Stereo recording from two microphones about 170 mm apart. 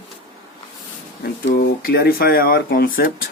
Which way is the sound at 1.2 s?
65° left (ahead or behind).